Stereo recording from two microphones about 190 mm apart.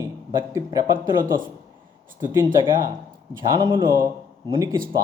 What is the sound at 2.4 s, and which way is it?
A man's voice, 20° right (ahead or behind).